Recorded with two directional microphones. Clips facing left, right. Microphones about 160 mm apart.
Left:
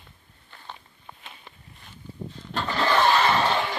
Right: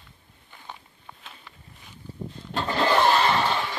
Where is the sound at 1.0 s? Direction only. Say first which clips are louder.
Left 1 dB; 5° left (ahead or behind).